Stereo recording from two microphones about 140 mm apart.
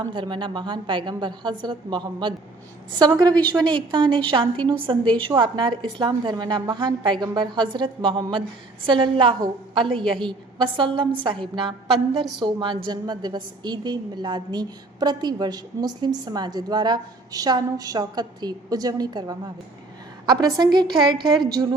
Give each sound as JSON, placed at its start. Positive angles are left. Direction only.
{"t": 0.0, "sound": "a woman's voice", "side_deg": -35}